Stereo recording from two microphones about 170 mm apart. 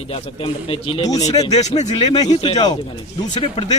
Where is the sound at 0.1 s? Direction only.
30° left (ahead or behind).